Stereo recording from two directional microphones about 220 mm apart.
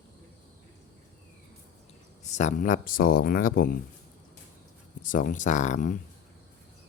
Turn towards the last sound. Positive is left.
turn(degrees=35)  # may be behind; listen again after turning